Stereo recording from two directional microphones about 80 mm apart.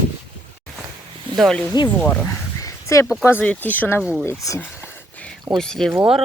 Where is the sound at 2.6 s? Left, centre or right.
Left.